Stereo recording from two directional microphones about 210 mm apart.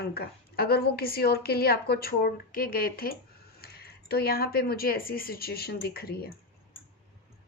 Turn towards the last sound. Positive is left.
turn(degrees=45)  # may be behind; listen again after turning